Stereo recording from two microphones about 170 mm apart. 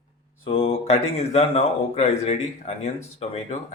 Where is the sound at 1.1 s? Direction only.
35° left (ahead or behind).